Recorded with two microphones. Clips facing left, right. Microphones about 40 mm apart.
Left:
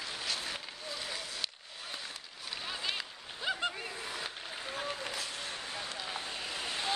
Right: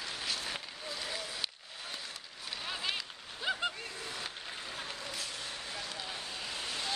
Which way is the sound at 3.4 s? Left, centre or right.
Centre.